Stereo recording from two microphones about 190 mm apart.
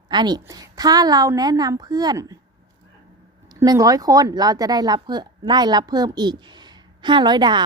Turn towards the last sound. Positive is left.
turn(degrees=-25)  # may be behind; listen again after turning